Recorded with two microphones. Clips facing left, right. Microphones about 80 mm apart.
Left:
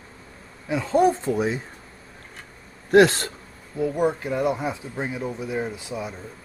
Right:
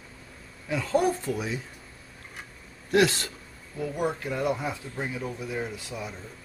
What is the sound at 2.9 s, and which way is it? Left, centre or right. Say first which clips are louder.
Speech: left 7 dB; left.